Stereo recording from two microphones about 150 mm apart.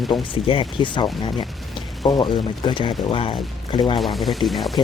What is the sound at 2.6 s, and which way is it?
Speech, 35° left (ahead or behind).